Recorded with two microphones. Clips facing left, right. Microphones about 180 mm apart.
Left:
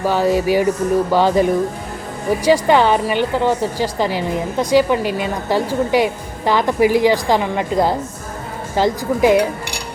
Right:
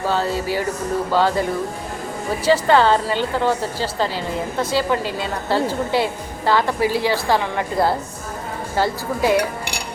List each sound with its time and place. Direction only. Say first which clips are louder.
0.0 s a woman's voice: left 5 dB; 15° left (ahead or behind)